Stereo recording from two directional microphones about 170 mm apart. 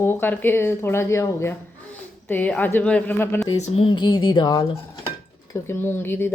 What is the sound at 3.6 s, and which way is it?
Speech, 35° left (ahead or behind).